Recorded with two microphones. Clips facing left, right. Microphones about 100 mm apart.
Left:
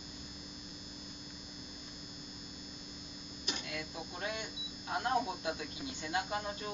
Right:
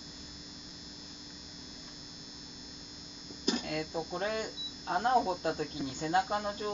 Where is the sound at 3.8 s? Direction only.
40° right (ahead or behind).